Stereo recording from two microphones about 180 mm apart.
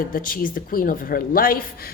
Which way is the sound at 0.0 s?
50° left (ahead or behind).